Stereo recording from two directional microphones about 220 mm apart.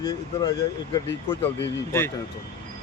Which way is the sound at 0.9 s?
20° left (ahead or behind).